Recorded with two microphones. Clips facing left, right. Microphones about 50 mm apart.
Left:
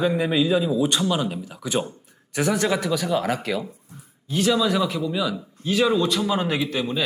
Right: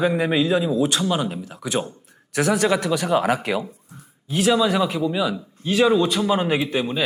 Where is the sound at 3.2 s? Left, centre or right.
Centre.